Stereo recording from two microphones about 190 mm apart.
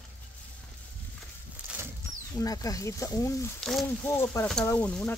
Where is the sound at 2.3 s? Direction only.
20° left (ahead or behind).